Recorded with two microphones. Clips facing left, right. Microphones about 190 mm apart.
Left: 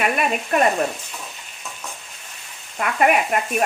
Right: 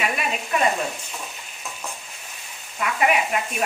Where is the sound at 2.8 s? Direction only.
50° left (ahead or behind).